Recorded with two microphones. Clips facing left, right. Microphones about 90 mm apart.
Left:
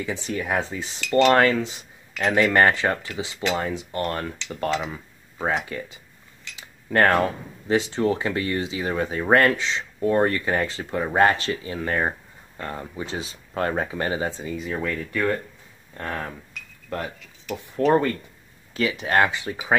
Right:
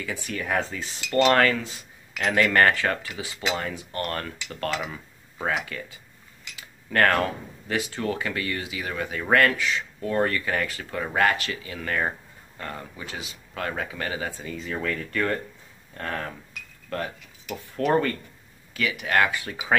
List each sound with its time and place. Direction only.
0.0 s speech: 25° left (ahead or behind)
16.9 s speech: 20° left (ahead or behind)
18.7 s speech: 30° left (ahead or behind)